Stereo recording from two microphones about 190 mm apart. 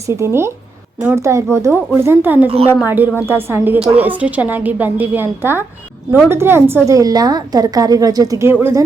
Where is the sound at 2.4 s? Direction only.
30° right (ahead or behind).